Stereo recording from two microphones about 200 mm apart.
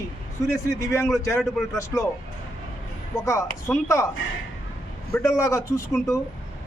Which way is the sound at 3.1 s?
15° left (ahead or behind).